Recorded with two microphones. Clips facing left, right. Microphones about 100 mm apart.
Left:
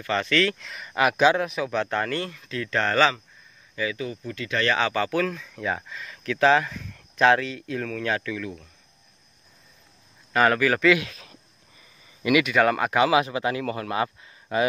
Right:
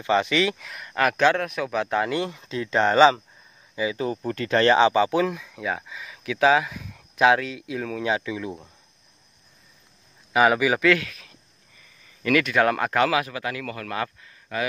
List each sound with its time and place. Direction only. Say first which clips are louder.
0.0 s speech: right 2 dB; 15° right (ahead or behind)
3.9 s speech: right 5 dB; 35° right (ahead or behind)
4.7 s speech: right 5 dB; 20° right (ahead or behind)
10.3 s speech: right 1 dB; 10° right (ahead or behind)
11.1 s speech: even; 30° left (ahead or behind)
12.2 s speech: even; 10° left (ahead or behind)
13.1 s speech: left 4 dB; 25° left (ahead or behind)